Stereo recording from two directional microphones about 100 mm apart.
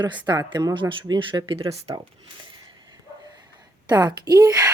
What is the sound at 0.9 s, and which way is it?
Speech, 60° right (ahead or behind).